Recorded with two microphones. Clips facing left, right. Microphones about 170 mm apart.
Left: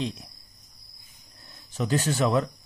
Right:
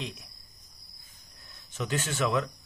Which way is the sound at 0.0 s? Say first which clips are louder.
Left 8 dB; 30° left (ahead or behind).